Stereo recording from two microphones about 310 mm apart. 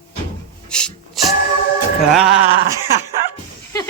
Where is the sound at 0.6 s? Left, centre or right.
Centre.